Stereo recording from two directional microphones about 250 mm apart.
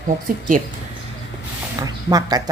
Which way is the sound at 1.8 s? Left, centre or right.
Centre.